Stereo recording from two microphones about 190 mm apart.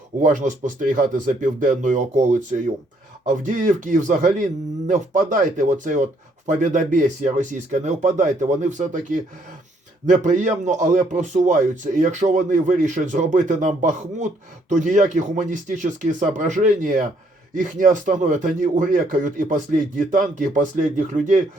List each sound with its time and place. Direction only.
0.2 s a man's voice: 40° right (ahead or behind)